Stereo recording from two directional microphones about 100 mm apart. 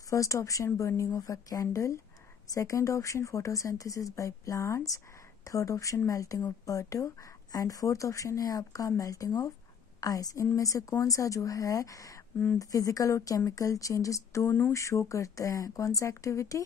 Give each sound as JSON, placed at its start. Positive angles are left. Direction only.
{"t": 0.1, "sound": "speech", "side_deg": 35}